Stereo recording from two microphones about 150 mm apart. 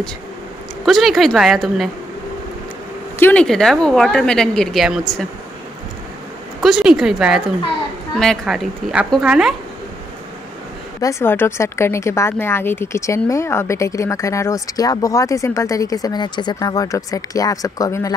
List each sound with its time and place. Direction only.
0.8 s a woman's voice: centre (ahead or behind)
3.2 s speech: 15° left (ahead or behind)
3.4 s a woman's voice: centre (ahead or behind)
6.6 s a woman's voice: 5° right (ahead or behind)
11.0 s speech: 20° left (ahead or behind)